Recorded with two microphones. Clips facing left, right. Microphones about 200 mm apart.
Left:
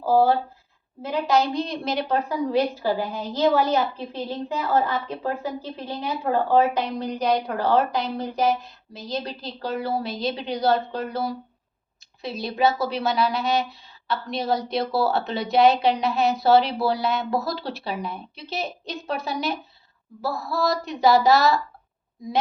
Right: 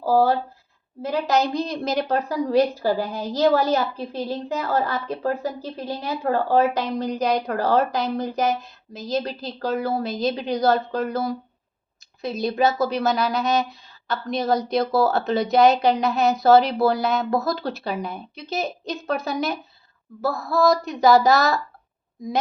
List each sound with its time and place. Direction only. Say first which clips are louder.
1.0 s a woman's voice: even; 40° right (ahead or behind)